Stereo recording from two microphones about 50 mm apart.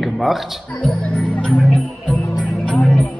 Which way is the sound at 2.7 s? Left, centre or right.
Left.